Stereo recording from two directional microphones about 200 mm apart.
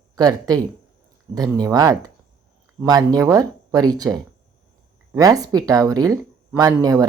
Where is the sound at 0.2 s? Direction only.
20° right (ahead or behind).